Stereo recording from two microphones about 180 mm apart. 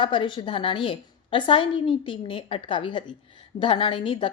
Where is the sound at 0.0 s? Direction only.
25° left (ahead or behind).